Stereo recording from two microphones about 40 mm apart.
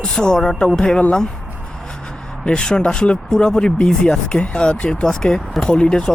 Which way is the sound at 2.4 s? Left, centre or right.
Left.